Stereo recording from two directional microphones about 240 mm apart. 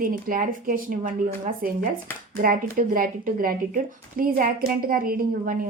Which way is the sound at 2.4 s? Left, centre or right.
Right.